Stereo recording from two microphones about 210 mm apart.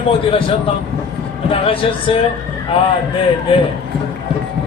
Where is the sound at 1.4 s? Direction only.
25° left (ahead or behind).